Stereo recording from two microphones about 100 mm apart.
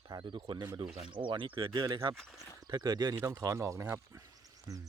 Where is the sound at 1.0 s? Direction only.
55° right (ahead or behind).